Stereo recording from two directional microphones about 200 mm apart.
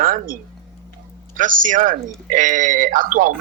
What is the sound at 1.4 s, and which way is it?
Speech, 40° right (ahead or behind).